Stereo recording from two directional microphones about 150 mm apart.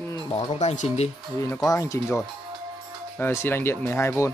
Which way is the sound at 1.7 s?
20° left (ahead or behind).